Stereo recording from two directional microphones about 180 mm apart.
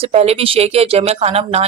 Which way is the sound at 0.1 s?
35° right (ahead or behind).